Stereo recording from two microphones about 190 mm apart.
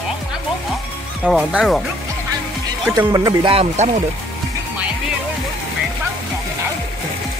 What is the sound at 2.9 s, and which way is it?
Speech, 20° right (ahead or behind).